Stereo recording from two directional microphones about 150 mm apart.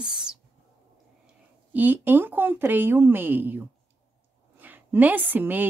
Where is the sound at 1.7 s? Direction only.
10° right (ahead or behind).